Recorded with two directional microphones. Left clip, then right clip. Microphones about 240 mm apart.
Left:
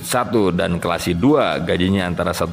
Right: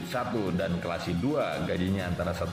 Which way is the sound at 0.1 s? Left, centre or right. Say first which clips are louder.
Left 13 dB; left.